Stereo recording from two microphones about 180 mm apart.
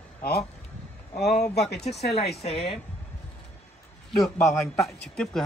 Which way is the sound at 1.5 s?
65° left (ahead or behind).